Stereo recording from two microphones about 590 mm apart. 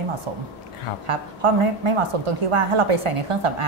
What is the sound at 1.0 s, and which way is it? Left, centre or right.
A woman's voice, right.